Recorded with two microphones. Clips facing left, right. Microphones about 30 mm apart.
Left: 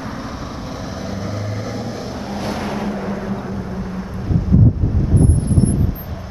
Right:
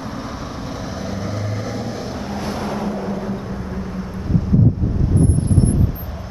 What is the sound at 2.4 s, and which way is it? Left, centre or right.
Vehicle, left.